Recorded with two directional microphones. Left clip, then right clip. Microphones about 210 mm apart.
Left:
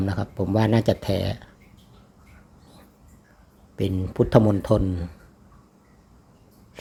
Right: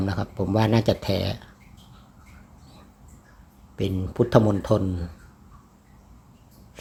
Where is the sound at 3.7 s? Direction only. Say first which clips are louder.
Left 1 dB; 15° left (ahead or behind).